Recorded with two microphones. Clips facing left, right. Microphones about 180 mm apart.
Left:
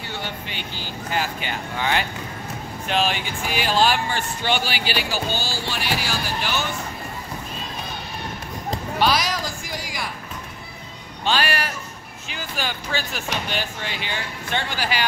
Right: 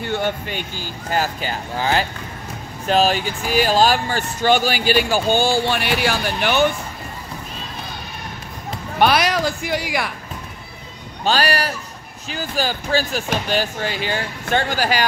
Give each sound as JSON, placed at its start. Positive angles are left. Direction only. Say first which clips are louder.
{"t": 0.0, "sound": "speech", "louder": "right 9 dB", "side_deg": -50}
{"t": 9.0, "sound": "a sound", "louder": "right 6 dB", "side_deg": -60}
{"t": 11.2, "sound": "speech", "louder": "right 4 dB", "side_deg": -40}